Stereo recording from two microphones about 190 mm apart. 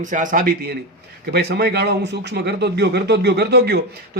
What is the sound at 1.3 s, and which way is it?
Speech, 55° right (ahead or behind).